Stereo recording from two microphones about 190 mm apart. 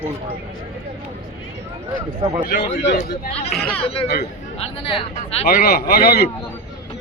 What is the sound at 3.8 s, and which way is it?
Speech, 30° left (ahead or behind).